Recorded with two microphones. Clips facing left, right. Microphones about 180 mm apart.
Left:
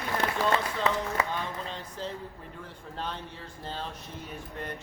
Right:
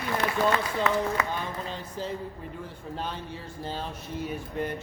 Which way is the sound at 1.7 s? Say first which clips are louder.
Right 3 dB; 5° right (ahead or behind).